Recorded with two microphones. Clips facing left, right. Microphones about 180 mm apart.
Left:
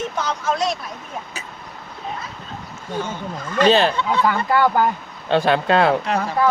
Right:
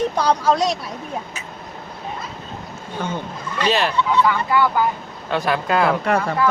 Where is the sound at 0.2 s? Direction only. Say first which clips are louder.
Right 4 dB; 35° right (ahead or behind).